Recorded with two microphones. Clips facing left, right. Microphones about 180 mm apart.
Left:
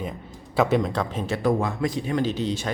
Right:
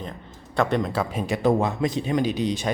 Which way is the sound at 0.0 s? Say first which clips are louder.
Left 3 dB; 5° left (ahead or behind).